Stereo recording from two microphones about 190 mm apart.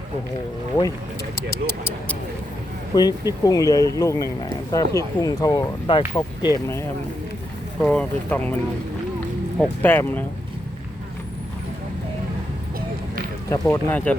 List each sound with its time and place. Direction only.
1.4 s speech: 15° left (ahead or behind)
7.8 s speech: 5° left (ahead or behind)
9.8 s speech: 10° left (ahead or behind)
13.5 s speech: 10° left (ahead or behind)